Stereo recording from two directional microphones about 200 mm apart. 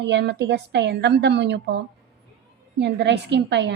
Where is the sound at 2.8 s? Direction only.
60° right (ahead or behind).